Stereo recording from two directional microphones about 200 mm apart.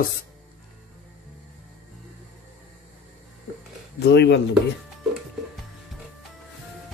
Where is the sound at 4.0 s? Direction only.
55° left (ahead or behind).